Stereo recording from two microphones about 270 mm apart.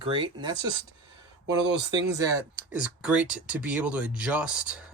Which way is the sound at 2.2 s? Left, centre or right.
Centre.